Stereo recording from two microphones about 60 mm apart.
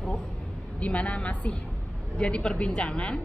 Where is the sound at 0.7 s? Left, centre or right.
Left.